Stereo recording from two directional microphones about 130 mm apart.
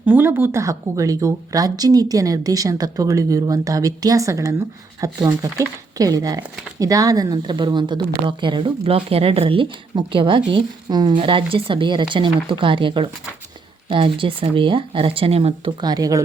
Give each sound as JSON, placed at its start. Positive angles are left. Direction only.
{"t": 0.0, "sound": "speech", "side_deg": -15}
{"t": 11.2, "sound": "speech", "side_deg": -40}
{"t": 15.8, "sound": "speech", "side_deg": -30}